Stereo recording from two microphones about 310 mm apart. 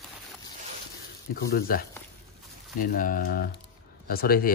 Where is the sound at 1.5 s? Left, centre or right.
Left.